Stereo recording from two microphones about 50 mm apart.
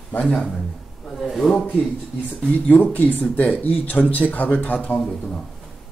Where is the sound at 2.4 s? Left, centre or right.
Left.